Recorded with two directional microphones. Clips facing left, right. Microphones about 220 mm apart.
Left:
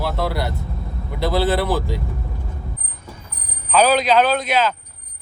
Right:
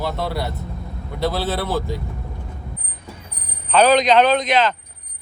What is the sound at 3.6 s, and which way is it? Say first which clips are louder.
A man's voice: right 2 dB; 10° left (ahead or behind).